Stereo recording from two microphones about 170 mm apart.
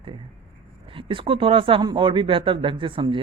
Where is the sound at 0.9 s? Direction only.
30° right (ahead or behind).